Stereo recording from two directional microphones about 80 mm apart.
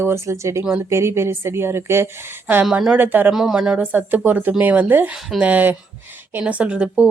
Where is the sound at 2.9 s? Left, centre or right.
Right.